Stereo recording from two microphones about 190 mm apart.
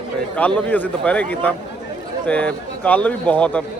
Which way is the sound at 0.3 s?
5° left (ahead or behind).